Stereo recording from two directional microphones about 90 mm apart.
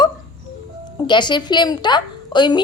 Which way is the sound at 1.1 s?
55° left (ahead or behind).